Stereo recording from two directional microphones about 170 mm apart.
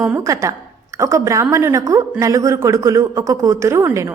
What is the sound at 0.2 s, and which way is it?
A woman's voice, 20° right (ahead or behind).